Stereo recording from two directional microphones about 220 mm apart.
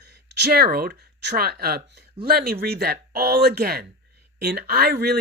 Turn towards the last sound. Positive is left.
turn(degrees=-45)  # may be behind; listen again after turning